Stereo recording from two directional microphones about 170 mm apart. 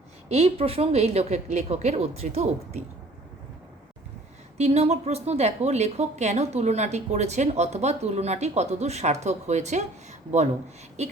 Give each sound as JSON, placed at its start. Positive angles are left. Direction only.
{"t": 0.3, "sound": "speech", "side_deg": -35}
{"t": 4.5, "sound": "speech", "side_deg": -40}